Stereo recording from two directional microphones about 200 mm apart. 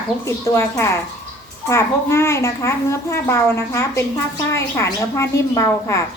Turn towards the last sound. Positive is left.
turn(degrees=15)  # may be behind; listen again after turning